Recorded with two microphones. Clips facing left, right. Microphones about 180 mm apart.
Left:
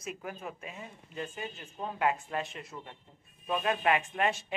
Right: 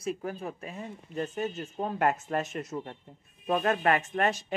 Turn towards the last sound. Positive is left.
turn(degrees=-40)  # may be behind; listen again after turning